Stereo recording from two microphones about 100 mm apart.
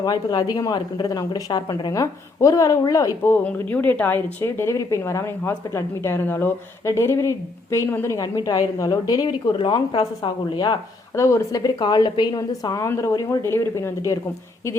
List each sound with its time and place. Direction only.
0.0 s a woman's voice: 40° left (ahead or behind)
3.4 s speech: 15° left (ahead or behind); by 10.8 s 50° left (ahead or behind)
11.2 s a woman's voice: 30° left (ahead or behind)
11.8 s speech: 50° left (ahead or behind); by 13.9 s 25° left (ahead or behind)